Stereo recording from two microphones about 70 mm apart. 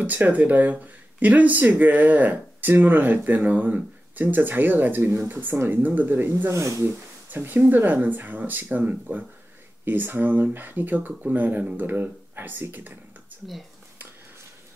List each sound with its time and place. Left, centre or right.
0.0 s speech: right
6.5 s speech: right
7.2 s speech: right